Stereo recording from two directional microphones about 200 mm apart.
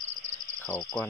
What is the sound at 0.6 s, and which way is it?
Cricket, 5° left (ahead or behind).